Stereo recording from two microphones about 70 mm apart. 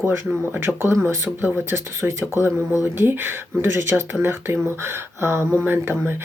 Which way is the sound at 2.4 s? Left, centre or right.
Left.